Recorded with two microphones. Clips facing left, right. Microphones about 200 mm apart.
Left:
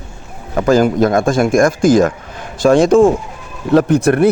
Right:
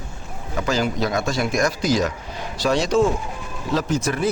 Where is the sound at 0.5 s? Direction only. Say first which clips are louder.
Left 11 dB; 50° left (ahead or behind).